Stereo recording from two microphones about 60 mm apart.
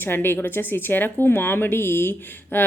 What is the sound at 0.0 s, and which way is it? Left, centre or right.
Speech, left.